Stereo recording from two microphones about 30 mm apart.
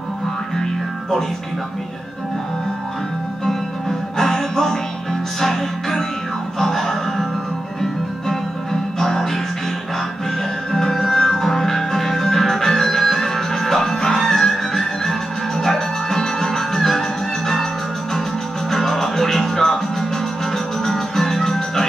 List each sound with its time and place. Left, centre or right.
4.2 s music: centre
9.0 s music: centre
10.7 s music: centre
18.7 s music: centre